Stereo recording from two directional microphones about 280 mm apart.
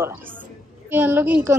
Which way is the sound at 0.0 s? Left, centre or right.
Centre.